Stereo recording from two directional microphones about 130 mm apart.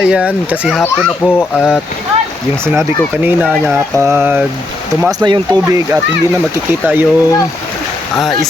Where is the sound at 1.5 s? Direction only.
5° right (ahead or behind).